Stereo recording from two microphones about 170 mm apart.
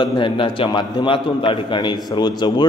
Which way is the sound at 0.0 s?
30° left (ahead or behind).